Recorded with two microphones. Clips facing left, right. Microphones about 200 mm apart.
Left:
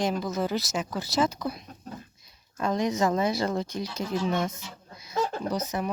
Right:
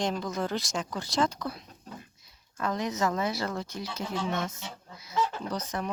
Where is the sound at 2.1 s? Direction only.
15° left (ahead or behind).